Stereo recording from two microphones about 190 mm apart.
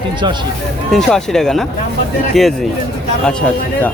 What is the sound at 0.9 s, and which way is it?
A man's voice, centre (ahead or behind).